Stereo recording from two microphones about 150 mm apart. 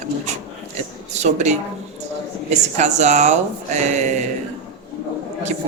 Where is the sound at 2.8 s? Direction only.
50° right (ahead or behind).